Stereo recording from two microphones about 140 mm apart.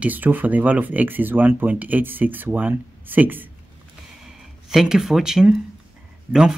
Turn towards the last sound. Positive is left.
turn(degrees=-5)  # may be behind; listen again after turning